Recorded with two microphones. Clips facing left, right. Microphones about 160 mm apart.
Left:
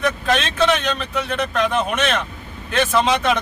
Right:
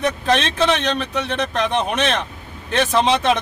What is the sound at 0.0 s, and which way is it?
Speech, 35° right (ahead or behind).